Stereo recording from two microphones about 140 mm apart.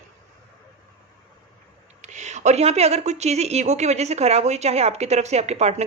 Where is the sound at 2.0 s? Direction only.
55° right (ahead or behind).